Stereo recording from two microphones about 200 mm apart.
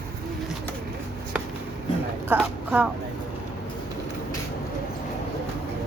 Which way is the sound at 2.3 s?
5° right (ahead or behind).